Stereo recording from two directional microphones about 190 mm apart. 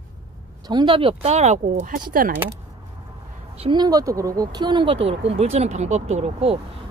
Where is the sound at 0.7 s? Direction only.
25° right (ahead or behind).